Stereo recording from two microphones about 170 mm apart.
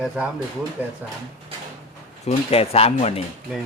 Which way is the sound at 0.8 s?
10° right (ahead or behind).